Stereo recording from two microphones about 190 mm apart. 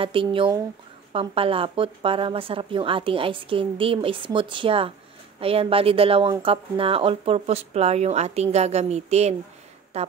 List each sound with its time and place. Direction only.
0.0 s a woman's voice: 25° right (ahead or behind)